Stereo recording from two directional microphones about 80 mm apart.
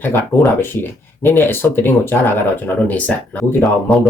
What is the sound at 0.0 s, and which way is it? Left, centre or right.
Speech, left.